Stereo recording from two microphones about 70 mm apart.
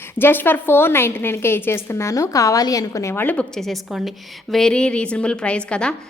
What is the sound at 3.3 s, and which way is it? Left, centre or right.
A woman's voice, centre.